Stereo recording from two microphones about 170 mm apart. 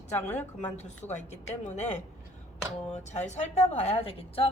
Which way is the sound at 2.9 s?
40° left (ahead or behind).